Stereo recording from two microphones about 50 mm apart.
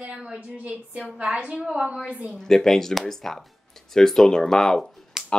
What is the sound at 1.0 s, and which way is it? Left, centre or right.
Speech, centre.